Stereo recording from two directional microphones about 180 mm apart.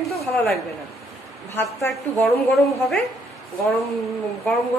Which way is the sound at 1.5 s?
15° left (ahead or behind).